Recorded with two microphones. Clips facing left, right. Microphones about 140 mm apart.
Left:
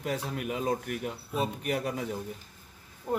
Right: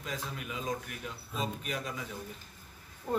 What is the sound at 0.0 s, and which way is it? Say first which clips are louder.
A man's voice: left 7 dB; 65° left (ahead or behind).